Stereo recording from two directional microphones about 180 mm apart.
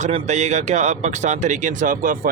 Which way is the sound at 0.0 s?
40° right (ahead or behind).